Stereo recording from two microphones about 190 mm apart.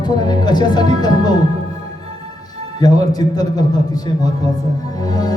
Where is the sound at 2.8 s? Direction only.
20° left (ahead or behind).